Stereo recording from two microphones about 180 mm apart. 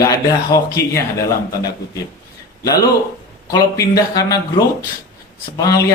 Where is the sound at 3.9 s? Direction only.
20° left (ahead or behind).